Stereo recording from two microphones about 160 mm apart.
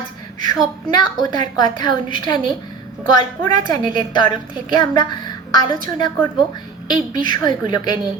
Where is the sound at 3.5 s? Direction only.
55° right (ahead or behind).